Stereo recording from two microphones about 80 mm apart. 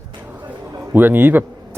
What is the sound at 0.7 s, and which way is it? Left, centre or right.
Speech, right.